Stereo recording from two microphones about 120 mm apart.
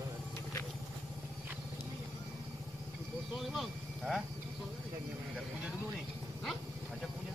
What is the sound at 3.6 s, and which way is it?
Vehicle, centre (ahead or behind).